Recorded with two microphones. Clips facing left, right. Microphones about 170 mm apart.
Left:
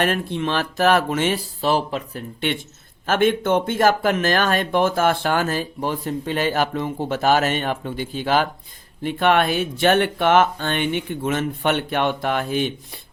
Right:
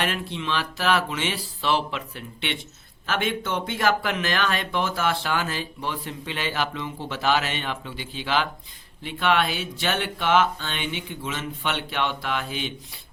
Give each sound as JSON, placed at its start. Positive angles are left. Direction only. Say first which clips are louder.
{"t": 0.0, "sound": "speech", "louder": "left 7 dB", "side_deg": 50}